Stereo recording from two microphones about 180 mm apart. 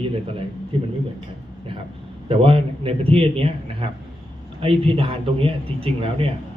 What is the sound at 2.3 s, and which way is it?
A man's voice, 30° right (ahead or behind).